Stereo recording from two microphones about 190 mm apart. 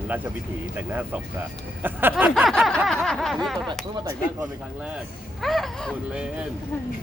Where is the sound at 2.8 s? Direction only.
Centre (ahead or behind).